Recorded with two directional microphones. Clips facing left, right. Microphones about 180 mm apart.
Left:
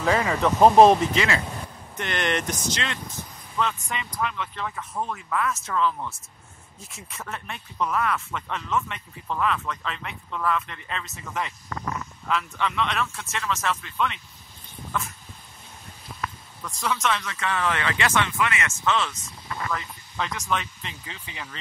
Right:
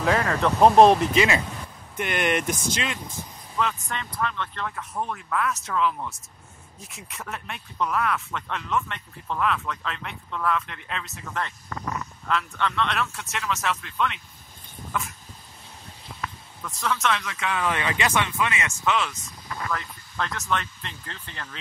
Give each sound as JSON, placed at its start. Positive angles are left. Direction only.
{"t": 0.0, "sound": "speech", "side_deg": 0}
{"t": 1.1, "sound": "speech", "side_deg": -20}
{"t": 16.8, "sound": "speech", "side_deg": 0}
{"t": 17.6, "sound": "speech", "side_deg": -15}
{"t": 18.9, "sound": "speech", "side_deg": 0}
{"t": 20.6, "sound": "speech", "side_deg": 10}